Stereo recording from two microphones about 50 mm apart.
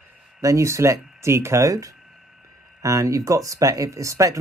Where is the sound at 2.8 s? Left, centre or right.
Right.